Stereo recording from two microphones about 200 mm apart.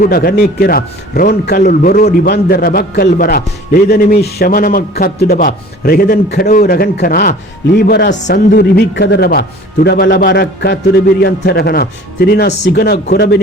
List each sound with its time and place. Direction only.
0.0 s a man's voice: 50° left (ahead or behind)